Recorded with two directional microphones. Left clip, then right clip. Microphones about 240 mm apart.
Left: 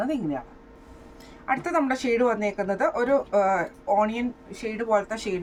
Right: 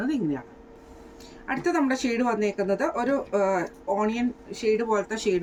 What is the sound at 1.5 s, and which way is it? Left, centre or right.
Speech, centre.